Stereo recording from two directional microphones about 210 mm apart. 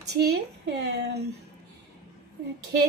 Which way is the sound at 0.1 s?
50° right (ahead or behind).